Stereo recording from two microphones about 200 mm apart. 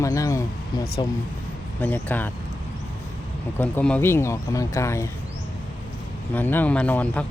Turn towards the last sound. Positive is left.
turn(degrees=5)  # may be behind; listen again after turning